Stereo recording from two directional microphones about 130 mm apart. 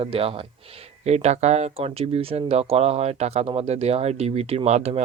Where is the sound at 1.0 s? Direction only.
55° right (ahead or behind).